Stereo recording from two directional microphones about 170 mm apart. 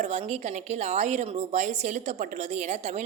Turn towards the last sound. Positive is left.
turn(degrees=-40)  # may be behind; listen again after turning